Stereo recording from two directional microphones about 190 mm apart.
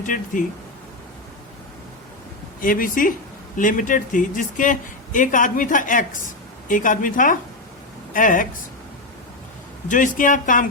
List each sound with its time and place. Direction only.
0.0 s speech: 45° left (ahead or behind)
2.6 s speech: 45° left (ahead or behind)
9.9 s speech: 45° left (ahead or behind)